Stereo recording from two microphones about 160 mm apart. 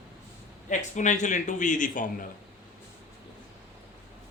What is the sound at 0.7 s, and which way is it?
A man's voice, 50° left (ahead or behind).